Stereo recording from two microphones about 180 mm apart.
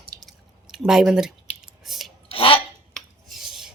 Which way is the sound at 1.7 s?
Centre (ahead or behind).